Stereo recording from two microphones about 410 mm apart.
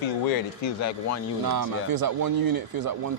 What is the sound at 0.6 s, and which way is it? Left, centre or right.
Speech, left.